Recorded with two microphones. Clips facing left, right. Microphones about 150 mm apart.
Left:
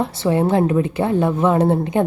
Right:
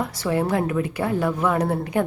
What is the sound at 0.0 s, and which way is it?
A woman's voice, 25° left (ahead or behind).